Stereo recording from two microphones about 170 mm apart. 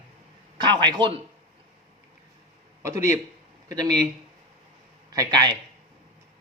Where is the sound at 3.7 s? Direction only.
20° right (ahead or behind).